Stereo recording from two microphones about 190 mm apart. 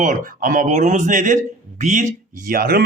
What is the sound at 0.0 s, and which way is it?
Speech, 45° right (ahead or behind).